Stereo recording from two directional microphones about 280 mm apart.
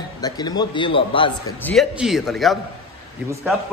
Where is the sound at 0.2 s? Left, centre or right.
Centre.